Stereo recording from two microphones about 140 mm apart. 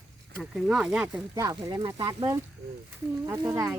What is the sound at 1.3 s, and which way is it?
Speech, 25° right (ahead or behind).